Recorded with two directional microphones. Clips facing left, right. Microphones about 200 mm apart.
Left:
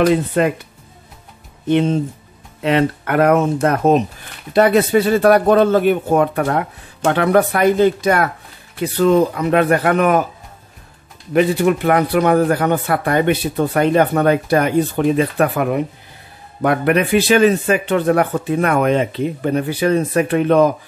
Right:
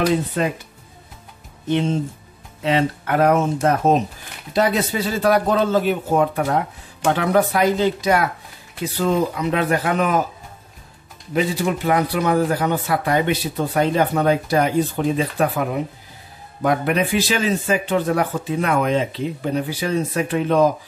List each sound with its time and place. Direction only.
0.0 s speech: 60° left (ahead or behind)
1.7 s speech: 60° left (ahead or behind)
4.6 s speech: 60° left (ahead or behind)
11.3 s speech: 60° left (ahead or behind)